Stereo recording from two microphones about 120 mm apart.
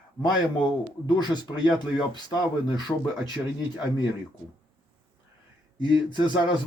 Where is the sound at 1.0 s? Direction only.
35° left (ahead or behind).